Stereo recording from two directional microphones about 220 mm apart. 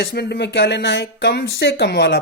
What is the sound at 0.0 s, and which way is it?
Speech, 50° left (ahead or behind).